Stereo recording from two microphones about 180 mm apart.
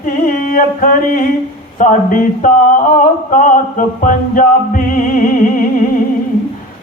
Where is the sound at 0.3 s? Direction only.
50° left (ahead or behind).